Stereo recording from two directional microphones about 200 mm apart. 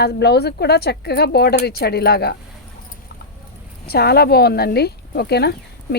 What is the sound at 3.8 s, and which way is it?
Speech, 50° left (ahead or behind).